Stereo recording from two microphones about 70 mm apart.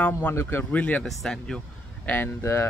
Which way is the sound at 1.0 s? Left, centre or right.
Centre.